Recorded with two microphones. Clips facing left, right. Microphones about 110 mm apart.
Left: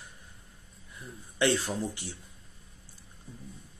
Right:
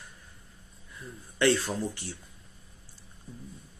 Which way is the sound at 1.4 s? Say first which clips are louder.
Right 2 dB; 15° left (ahead or behind).